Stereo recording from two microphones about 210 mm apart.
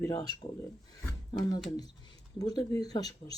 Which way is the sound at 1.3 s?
20° left (ahead or behind).